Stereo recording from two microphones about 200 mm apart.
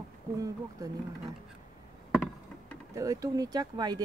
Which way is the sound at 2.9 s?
15° right (ahead or behind).